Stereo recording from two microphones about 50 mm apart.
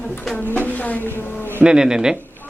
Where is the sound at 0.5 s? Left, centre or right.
Left.